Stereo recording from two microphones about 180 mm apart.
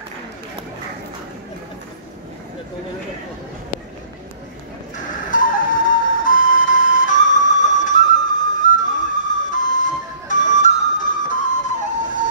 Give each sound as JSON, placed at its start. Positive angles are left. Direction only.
{"t": 4.9, "sound": "music", "side_deg": 50}
{"t": 10.6, "sound": "flute", "side_deg": 45}